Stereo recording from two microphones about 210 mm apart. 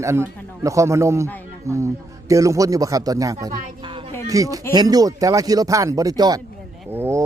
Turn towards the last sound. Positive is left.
turn(degrees=-10)  # may be behind; listen again after turning